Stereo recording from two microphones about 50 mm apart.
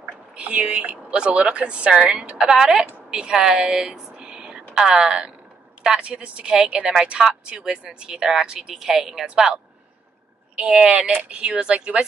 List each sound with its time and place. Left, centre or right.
0.4 s speech: right
3.1 s a sound: centre
4.7 s a woman's voice: centre
10.6 s speech: right